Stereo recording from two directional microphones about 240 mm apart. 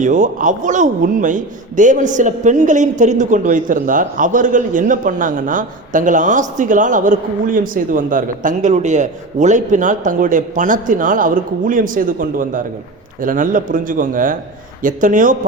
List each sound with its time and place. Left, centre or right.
0.0 s speech: right